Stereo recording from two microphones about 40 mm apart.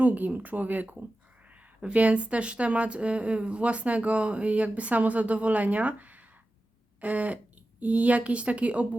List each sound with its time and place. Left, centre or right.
0.0 s speech: right
1.5 s speech: right